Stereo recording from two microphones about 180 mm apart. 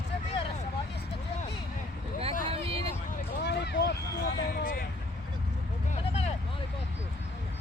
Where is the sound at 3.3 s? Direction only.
70° left (ahead or behind).